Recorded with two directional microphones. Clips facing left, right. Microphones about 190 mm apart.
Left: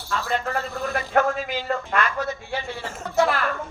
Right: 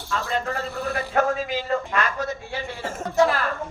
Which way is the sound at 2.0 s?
45° right (ahead or behind).